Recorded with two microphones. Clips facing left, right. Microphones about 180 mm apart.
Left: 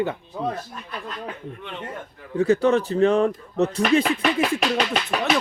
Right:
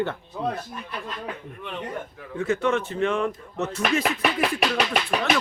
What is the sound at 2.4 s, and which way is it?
Speech, 35° left (ahead or behind).